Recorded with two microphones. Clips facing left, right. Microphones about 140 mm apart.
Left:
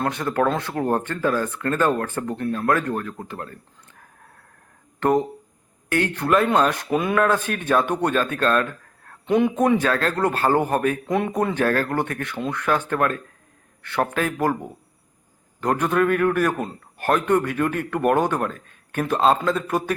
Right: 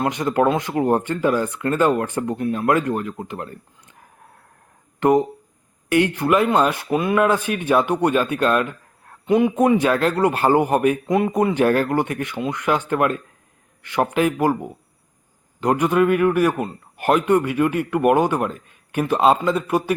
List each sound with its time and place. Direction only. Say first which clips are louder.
0.0 s speech: right 3 dB; 15° right (ahead or behind)
4.9 s speech: right 3 dB; 10° right (ahead or behind)
9.2 s speech: right 2 dB; 5° right (ahead or behind)
15.6 s speech: right 3 dB; 10° right (ahead or behind)